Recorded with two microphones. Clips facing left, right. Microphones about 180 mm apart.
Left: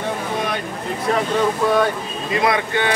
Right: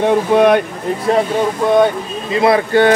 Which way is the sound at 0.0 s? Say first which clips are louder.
Right 12 dB; 65° right (ahead or behind).